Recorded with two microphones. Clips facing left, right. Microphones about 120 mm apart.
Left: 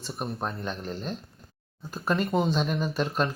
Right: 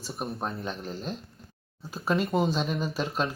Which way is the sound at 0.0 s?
Centre (ahead or behind).